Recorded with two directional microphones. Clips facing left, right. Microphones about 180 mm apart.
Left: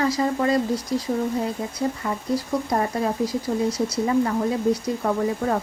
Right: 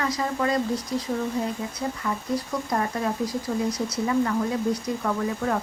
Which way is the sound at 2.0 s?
25° left (ahead or behind).